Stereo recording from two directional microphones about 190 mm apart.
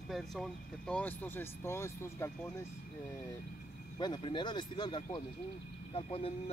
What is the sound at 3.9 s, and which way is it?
Speech, 25° left (ahead or behind).